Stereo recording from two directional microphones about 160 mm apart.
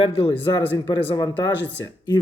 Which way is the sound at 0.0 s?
35° left (ahead or behind).